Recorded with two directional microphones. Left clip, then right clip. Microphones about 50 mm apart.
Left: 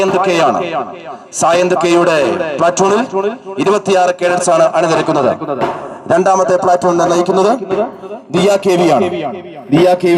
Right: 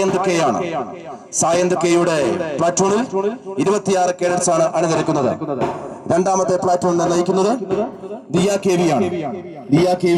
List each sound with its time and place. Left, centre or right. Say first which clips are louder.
0.0 s a man's voice: left 6 dB; left